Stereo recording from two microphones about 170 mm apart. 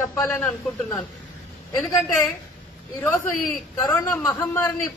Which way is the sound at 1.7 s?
15° left (ahead or behind).